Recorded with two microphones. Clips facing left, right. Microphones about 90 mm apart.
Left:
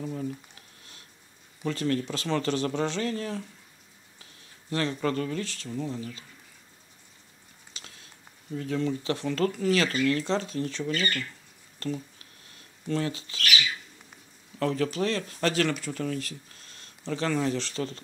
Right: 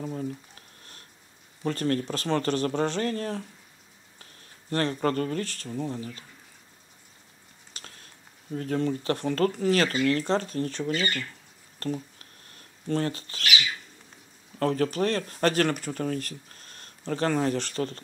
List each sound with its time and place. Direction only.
0.0 s speech: 35° right (ahead or behind)
1.6 s speech: 45° right (ahead or behind)
7.7 s a sound: 45° right (ahead or behind)
8.5 s speech: 45° right (ahead or behind)
10.8 s speech: 20° right (ahead or behind)
11.8 s a sound: 45° right (ahead or behind)
12.8 s speech: 45° right (ahead or behind)
14.6 s speech: 45° right (ahead or behind)